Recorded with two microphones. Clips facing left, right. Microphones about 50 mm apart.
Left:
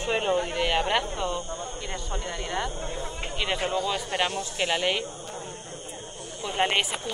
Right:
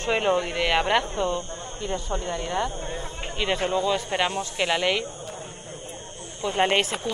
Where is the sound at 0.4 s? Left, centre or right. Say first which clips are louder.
Right 2 dB; right.